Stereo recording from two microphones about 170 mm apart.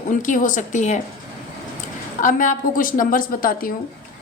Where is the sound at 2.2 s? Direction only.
50° left (ahead or behind).